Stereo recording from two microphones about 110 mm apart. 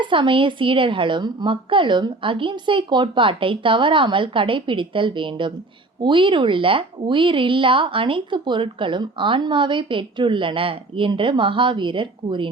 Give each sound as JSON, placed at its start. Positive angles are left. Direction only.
{"t": 0.0, "sound": "speech", "side_deg": -50}